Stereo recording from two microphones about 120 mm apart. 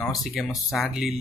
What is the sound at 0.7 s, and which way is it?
Speech, centre (ahead or behind).